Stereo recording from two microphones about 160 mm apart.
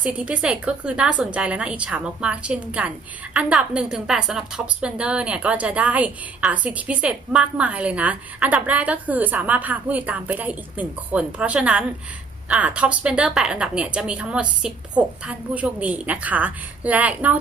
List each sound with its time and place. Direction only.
0.0 s a woman's voice: 10° right (ahead or behind)